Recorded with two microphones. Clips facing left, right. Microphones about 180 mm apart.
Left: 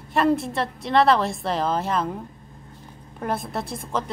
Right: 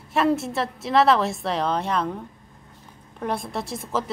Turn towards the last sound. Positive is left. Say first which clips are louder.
# even
turn(degrees=-5)  # may be behind; listen again after turning